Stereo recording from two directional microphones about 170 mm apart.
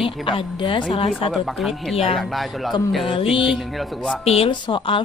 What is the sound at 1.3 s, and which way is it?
Speech, centre (ahead or behind).